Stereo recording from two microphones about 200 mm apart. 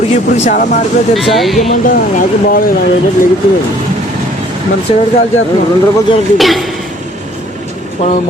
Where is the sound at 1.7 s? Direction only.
45° left (ahead or behind).